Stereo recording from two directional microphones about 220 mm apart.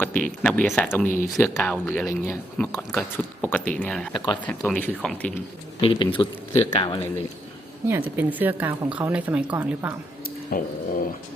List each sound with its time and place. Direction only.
0.0 s a sound: 10° left (ahead or behind)
0.4 s speech: 5° left (ahead or behind)
1.0 s speech: 35° left (ahead or behind)
1.4 s speech: 5° left (ahead or behind)
5.8 s speech: 20° left (ahead or behind)
7.9 s a woman's voice: 10° right (ahead or behind)
10.5 s speech: 40° left (ahead or behind)